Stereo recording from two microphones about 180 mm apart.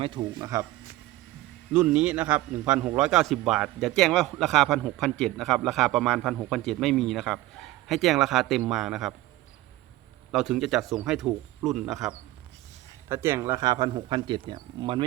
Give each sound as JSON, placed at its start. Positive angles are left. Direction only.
{"t": 0.0, "sound": "speech", "side_deg": -25}
{"t": 1.7, "sound": "a man's voice", "side_deg": -5}
{"t": 10.3, "sound": "a man's voice", "side_deg": -5}
{"t": 13.1, "sound": "speech", "side_deg": -15}